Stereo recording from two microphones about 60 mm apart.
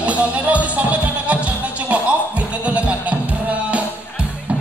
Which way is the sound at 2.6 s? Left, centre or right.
Right.